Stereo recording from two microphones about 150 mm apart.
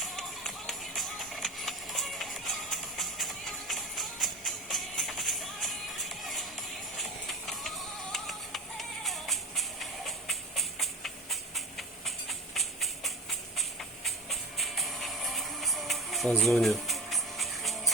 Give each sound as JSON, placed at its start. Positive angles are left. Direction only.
{"t": 0.0, "sound": "music", "side_deg": 5}
{"t": 8.1, "sound": "music", "side_deg": 0}